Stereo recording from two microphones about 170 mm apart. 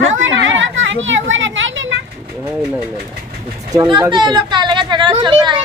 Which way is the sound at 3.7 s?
20° right (ahead or behind).